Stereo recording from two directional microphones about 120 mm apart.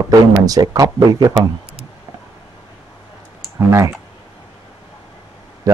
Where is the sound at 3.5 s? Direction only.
25° right (ahead or behind).